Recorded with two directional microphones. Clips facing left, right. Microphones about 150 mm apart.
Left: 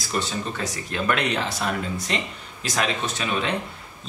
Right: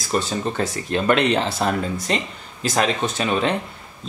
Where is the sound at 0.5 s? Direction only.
30° right (ahead or behind).